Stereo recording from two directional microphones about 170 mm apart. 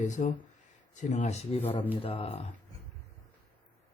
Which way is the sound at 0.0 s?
45° left (ahead or behind).